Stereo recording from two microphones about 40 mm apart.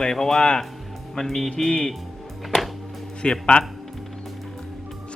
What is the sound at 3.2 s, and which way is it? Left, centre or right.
Speech, left.